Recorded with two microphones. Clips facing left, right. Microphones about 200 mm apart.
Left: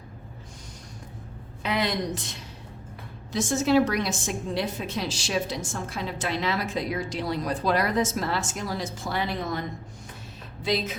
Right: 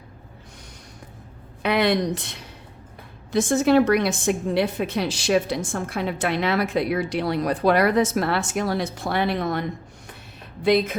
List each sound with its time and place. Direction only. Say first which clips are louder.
1.6 s a woman's voice: right 6 dB; 65° right (ahead or behind)